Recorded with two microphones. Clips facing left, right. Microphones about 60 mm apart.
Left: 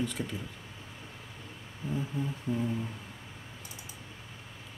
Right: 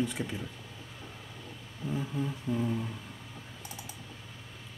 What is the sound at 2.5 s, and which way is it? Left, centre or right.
Speech, centre.